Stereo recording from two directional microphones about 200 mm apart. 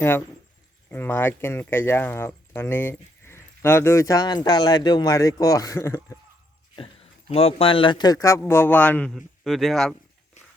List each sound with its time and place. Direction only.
0.9 s speech: 10° left (ahead or behind)
6.7 s a man's voice: 30° left (ahead or behind); by 9.9 s centre (ahead or behind)